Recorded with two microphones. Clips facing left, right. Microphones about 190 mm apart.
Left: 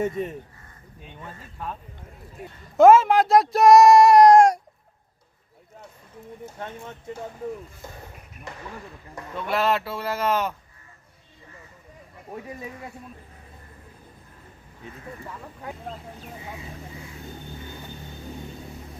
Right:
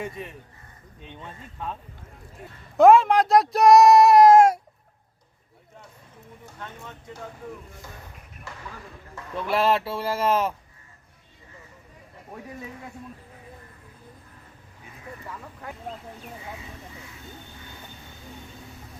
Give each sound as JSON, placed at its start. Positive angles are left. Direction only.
{"t": 0.0, "sound": "speech", "side_deg": 40}
{"t": 1.0, "sound": "speech", "side_deg": -20}
{"t": 2.4, "sound": "speech", "side_deg": 10}
{"t": 2.7, "sound": "speech", "side_deg": 0}
{"t": 9.5, "sound": "speech", "side_deg": -30}